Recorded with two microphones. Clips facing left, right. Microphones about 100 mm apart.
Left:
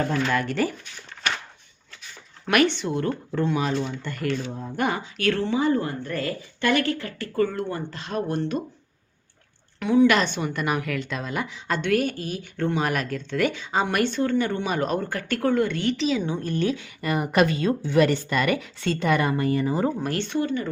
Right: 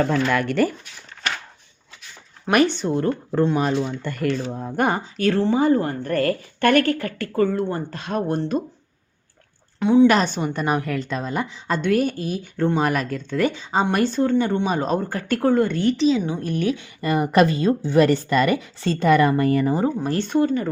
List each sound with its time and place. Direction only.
0.1 s speech: 60° right (ahead or behind)
2.7 s a woman's voice: 40° right (ahead or behind)
7.3 s a woman's voice: 40° right (ahead or behind)
9.8 s speech: 30° right (ahead or behind)
10.2 s a woman's voice: 40° right (ahead or behind)
16.1 s speech: 15° right (ahead or behind)
17.0 s a woman's voice: 35° right (ahead or behind)